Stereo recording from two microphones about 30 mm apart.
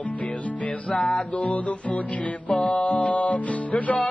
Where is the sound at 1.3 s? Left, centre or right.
Left.